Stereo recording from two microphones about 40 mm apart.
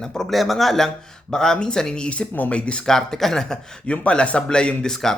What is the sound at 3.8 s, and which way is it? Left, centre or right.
Speech, left.